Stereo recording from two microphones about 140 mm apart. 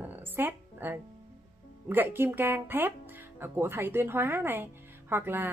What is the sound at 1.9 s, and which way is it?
Speech, 15° right (ahead or behind).